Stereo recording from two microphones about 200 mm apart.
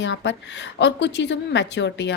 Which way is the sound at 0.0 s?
60° left (ahead or behind).